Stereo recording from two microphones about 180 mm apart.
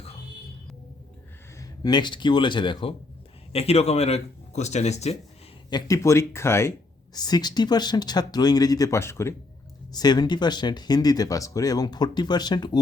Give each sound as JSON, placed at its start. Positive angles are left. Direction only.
{"t": 1.5, "sound": "speech", "side_deg": 20}
{"t": 5.7, "sound": "speech", "side_deg": 15}